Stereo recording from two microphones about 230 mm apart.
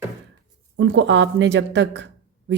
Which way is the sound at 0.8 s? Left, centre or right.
Right.